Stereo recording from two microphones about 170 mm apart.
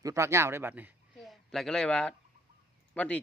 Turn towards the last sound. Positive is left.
turn(degrees=5)  # may be behind; listen again after turning